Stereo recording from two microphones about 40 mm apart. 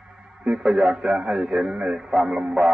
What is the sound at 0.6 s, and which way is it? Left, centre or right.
A man's voice, centre.